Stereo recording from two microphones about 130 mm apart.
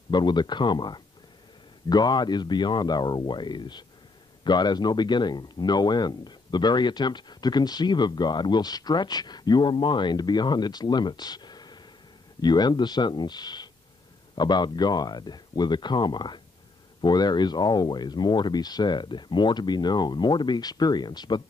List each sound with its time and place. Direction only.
0.1 s speech: 35° left (ahead or behind)